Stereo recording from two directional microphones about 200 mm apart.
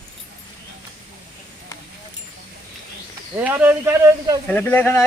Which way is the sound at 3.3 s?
10° right (ahead or behind).